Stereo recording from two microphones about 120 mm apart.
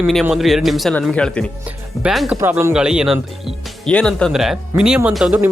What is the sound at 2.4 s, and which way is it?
Speech, 20° right (ahead or behind).